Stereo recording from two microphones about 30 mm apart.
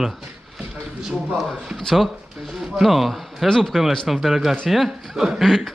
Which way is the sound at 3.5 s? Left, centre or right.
Centre.